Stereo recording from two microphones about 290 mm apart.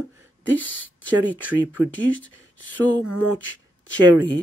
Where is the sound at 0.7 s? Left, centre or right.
Left.